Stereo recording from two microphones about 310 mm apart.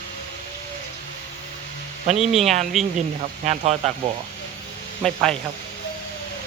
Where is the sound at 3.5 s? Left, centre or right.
Right.